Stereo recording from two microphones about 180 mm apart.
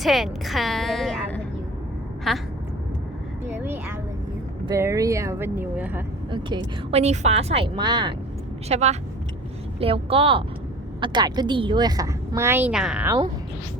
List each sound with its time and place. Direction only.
0.0 s a sound: centre (ahead or behind)
2.3 s quack: centre (ahead or behind)
3.4 s a sound: 10° right (ahead or behind)
4.6 s speech: 15° right (ahead or behind)
6.3 s speech: 30° right (ahead or behind)
8.7 s a woman's voice: 40° right (ahead or behind); by 13.1 s 5° right (ahead or behind)